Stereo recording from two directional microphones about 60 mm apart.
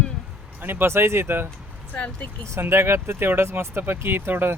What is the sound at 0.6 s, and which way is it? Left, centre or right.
Speech, right.